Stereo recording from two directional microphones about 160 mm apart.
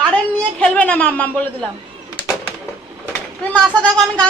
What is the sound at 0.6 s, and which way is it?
Speech, 10° left (ahead or behind).